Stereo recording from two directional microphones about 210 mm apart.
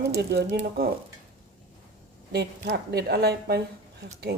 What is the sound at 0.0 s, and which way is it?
Speech, 50° right (ahead or behind).